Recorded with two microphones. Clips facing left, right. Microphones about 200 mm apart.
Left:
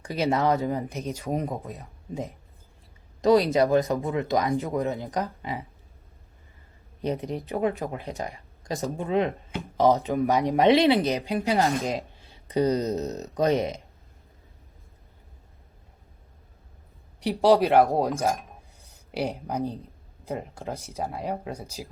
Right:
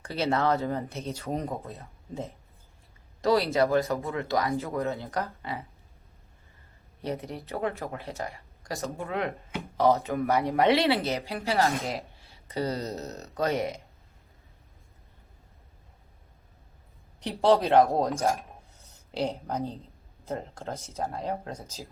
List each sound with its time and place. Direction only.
0.0 s speech: 15° left (ahead or behind)
7.0 s speech: 20° left (ahead or behind)
17.2 s speech: 10° left (ahead or behind)